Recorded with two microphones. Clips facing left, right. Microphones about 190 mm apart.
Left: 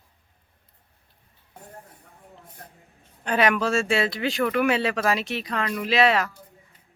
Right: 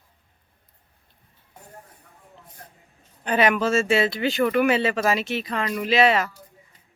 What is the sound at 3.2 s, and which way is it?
A woman's voice, centre (ahead or behind).